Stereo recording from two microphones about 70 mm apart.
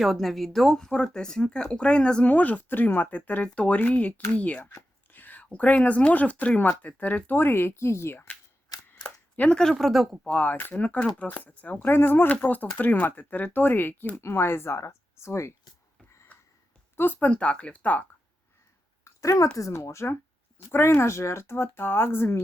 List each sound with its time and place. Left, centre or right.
0.0 s speech: centre; by 8.2 s left
8.7 s a sound: left
9.0 s a sound: left
9.6 s speech: centre
10.2 s speech: centre
14.2 s speech: left
17.0 s speech: left
19.0 s a sound: left
19.5 s speech: left